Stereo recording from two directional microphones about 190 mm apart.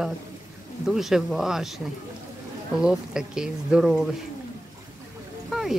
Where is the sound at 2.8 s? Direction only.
5° right (ahead or behind).